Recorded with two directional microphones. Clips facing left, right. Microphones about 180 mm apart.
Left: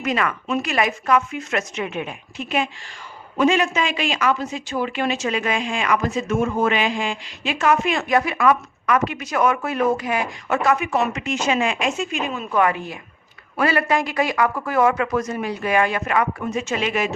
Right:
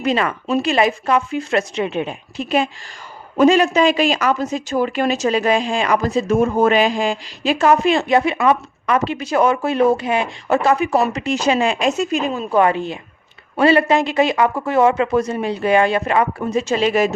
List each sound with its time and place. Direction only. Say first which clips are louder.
0.0 s speech: right 4 dB; 30° right (ahead or behind)